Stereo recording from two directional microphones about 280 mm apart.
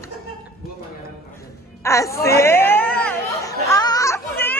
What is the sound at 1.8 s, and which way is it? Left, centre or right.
Speech, centre.